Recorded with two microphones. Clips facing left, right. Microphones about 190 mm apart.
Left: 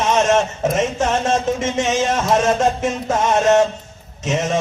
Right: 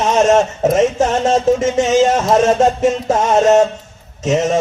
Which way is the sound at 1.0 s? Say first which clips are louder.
Right 4 dB; 40° right (ahead or behind).